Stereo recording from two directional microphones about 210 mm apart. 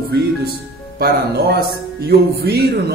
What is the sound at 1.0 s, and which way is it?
Speech, 50° right (ahead or behind).